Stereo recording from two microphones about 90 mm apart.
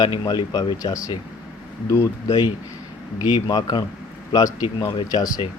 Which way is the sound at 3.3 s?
55° left (ahead or behind).